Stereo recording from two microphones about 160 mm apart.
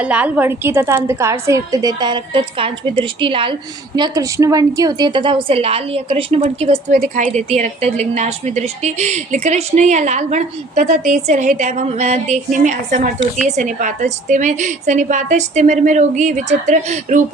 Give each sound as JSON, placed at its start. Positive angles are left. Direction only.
{"t": 0.0, "sound": "a woman's voice", "side_deg": -5}